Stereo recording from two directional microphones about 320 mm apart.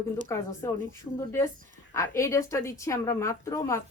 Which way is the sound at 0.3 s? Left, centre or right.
Centre.